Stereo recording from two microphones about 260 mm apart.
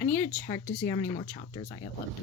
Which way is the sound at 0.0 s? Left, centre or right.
Centre.